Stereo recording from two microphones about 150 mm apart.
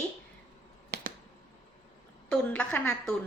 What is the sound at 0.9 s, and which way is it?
Finger snapping, 90° right.